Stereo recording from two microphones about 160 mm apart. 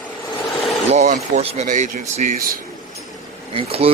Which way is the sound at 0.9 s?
45° right (ahead or behind).